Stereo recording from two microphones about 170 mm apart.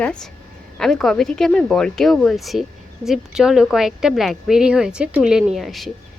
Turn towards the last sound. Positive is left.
turn(degrees=0)  # may be behind; listen again after turning